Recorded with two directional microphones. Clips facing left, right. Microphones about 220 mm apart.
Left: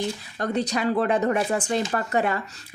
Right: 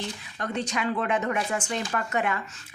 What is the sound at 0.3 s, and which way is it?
Speech, 35° left (ahead or behind).